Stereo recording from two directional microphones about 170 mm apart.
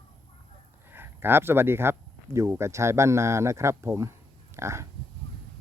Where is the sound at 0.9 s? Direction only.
10° right (ahead or behind).